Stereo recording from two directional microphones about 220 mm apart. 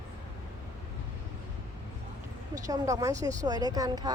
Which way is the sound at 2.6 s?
15° right (ahead or behind).